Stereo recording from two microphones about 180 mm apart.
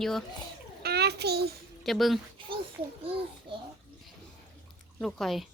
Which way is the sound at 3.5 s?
25° right (ahead or behind).